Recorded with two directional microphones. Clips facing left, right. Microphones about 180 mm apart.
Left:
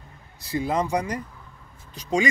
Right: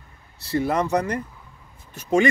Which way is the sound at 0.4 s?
15° left (ahead or behind).